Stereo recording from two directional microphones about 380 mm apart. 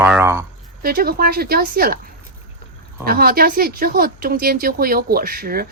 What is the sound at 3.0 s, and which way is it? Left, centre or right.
A woman's voice, right.